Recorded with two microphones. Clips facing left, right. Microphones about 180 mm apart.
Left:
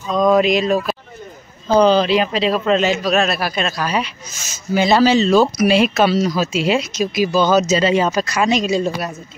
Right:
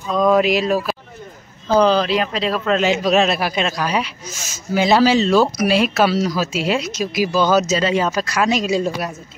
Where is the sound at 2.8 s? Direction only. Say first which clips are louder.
Right 1 dB; 15° right (ahead or behind).